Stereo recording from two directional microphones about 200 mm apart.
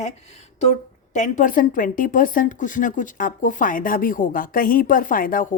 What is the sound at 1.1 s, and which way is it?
Speech, 40° left (ahead or behind).